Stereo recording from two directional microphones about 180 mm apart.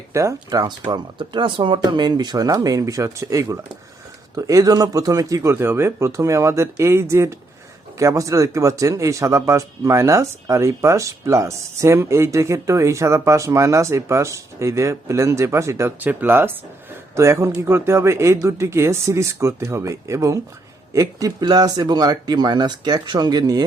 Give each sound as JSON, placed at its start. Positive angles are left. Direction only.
{"t": 0.1, "sound": "speech", "side_deg": -15}